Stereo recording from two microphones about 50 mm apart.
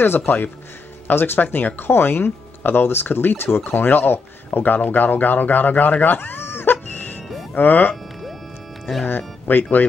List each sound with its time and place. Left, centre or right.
0.3 s speech: left
7.9 s music: centre
9.0 s speech: left